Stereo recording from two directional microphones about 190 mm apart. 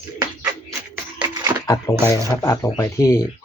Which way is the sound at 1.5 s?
25° right (ahead or behind).